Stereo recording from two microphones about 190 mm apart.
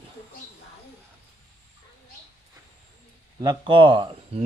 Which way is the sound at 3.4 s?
25° right (ahead or behind).